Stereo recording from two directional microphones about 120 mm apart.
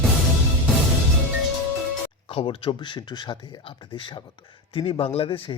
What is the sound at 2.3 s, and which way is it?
Speech, 50° left (ahead or behind).